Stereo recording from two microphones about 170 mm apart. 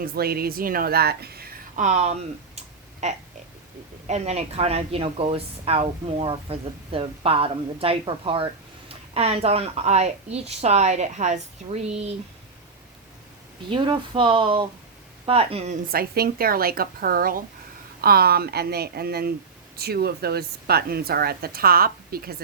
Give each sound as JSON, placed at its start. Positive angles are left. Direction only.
{"t": 0.0, "sound": "a woman's voice", "side_deg": -65}
{"t": 1.7, "sound": "speech", "side_deg": -45}
{"t": 2.6, "sound": "a sound", "side_deg": -40}
{"t": 4.0, "sound": "a woman's voice", "side_deg": -40}
{"t": 13.7, "sound": "a woman's voice", "side_deg": -30}
{"t": 15.9, "sound": "a woman's voice", "side_deg": -60}